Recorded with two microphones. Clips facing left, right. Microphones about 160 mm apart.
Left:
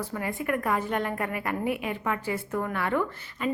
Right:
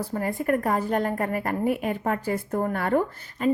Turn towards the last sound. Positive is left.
turn(degrees=-40)  # may be behind; listen again after turning